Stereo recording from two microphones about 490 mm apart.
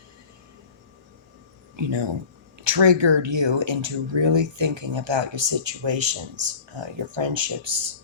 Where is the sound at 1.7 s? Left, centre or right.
Right.